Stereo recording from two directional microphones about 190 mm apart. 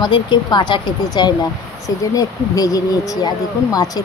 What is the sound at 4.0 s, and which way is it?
Speech, 20° left (ahead or behind).